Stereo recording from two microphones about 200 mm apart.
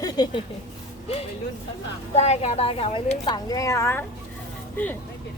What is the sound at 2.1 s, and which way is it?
A woman's voice, 35° left (ahead or behind).